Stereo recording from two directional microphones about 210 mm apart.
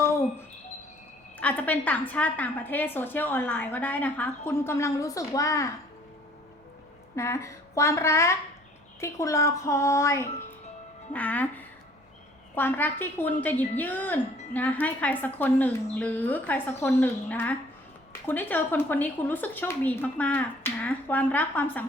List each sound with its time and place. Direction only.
1.4 s a woman's voice: 5° left (ahead or behind)
7.2 s a woman's voice: 15° left (ahead or behind)